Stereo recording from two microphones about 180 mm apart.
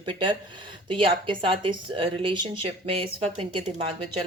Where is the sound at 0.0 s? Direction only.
25° right (ahead or behind).